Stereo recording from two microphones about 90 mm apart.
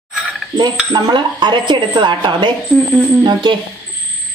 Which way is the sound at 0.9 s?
55° right (ahead or behind).